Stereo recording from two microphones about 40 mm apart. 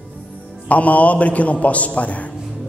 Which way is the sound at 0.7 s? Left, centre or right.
Left.